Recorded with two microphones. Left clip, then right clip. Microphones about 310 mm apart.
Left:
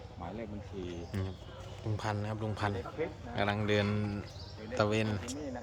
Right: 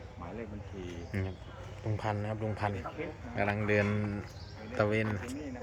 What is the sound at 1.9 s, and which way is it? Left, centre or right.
Speech, centre.